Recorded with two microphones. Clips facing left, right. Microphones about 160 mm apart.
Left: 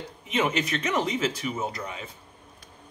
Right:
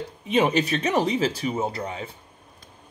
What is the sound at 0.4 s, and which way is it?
Speech, 30° right (ahead or behind).